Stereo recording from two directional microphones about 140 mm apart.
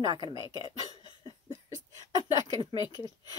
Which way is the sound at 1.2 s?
25° right (ahead or behind).